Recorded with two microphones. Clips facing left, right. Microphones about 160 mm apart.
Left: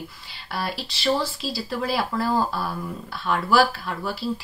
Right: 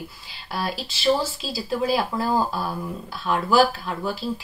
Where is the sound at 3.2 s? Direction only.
5° right (ahead or behind).